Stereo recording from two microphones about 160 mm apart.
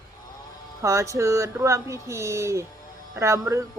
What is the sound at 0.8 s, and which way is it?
Speech, 20° right (ahead or behind).